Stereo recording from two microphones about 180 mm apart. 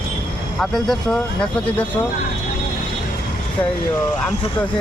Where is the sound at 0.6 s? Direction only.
Centre (ahead or behind).